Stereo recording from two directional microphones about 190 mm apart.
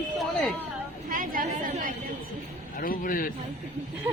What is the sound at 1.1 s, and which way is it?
Speech, 45° right (ahead or behind).